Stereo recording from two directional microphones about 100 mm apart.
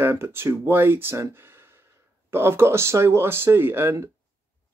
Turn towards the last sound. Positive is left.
turn(degrees=-25)  # may be behind; listen again after turning